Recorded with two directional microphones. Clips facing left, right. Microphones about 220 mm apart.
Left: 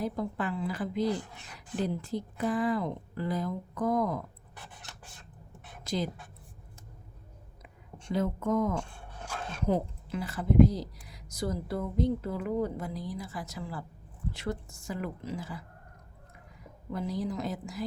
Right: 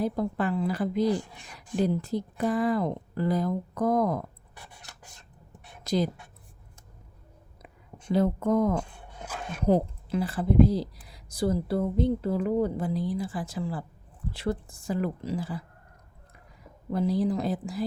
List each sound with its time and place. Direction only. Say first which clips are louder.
0.0 s speech: right 5 dB; 35° right (ahead or behind)
1.1 s speech: right 5 dB; 15° right (ahead or behind)
2.0 s speech: right 4 dB; 40° right (ahead or behind)
5.8 s a woman's voice: right 6 dB; 40° right (ahead or behind)
8.1 s speech: right 5 dB; 35° right (ahead or behind)
16.9 s speech: right 7 dB; 35° right (ahead or behind)